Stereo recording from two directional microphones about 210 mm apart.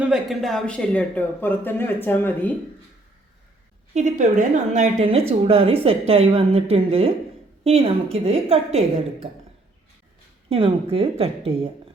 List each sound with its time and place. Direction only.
0.0 s speech: centre (ahead or behind)
3.9 s a woman's voice: 35° right (ahead or behind)
10.5 s a woman's voice: 25° right (ahead or behind)